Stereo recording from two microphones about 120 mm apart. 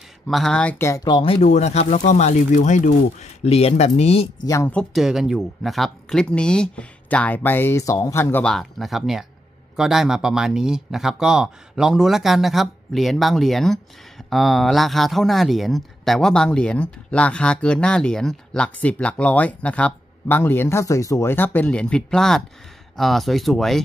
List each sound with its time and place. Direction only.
0.3 s speech: 5° left (ahead or behind)
0.7 s speech: 20° left (ahead or behind)
1.0 s speech: 45° left (ahead or behind)
1.4 s speech: 70° left (ahead or behind)
4.4 s speech: 25° left (ahead or behind)
4.9 s speech: 5° right (ahead or behind); by 8.5 s 15° left (ahead or behind)
8.5 s speech: centre (ahead or behind)